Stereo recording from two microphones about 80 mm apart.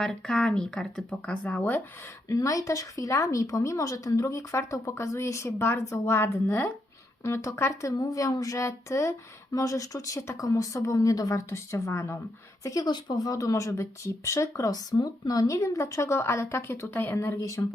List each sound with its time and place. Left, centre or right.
0.0 s speech: centre
1.5 s speech: left
2.3 s a woman's voice: left
12.6 s speech: left
12.9 s speech: left
13.2 s speech: left
15.5 s a woman's voice: left